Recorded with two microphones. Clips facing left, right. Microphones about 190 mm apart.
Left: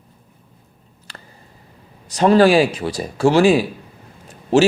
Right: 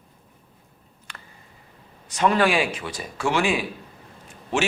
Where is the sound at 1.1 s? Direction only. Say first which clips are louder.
Left 4 dB; 35° left (ahead or behind).